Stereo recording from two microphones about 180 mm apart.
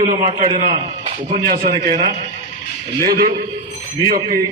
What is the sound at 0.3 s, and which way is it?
A man's voice, 45° right (ahead or behind).